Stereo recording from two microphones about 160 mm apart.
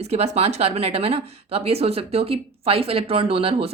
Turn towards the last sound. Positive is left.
turn(degrees=-35)  # may be behind; listen again after turning